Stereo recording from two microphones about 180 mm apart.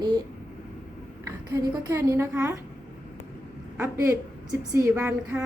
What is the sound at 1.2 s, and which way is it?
A woman's voice, 15° right (ahead or behind).